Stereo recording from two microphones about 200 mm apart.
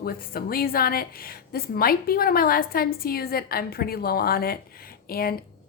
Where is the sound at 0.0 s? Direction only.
50° left (ahead or behind).